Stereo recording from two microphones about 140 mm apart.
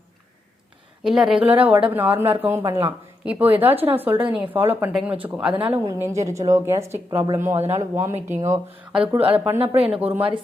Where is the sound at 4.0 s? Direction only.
15° right (ahead or behind).